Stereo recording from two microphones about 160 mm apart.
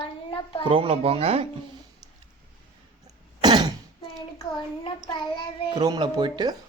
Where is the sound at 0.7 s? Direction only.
35° right (ahead or behind).